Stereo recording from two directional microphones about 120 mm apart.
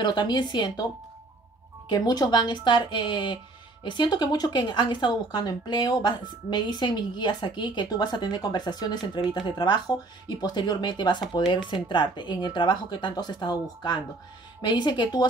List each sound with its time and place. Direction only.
0.0 s speech: 40° left (ahead or behind)
1.9 s speech: 35° left (ahead or behind)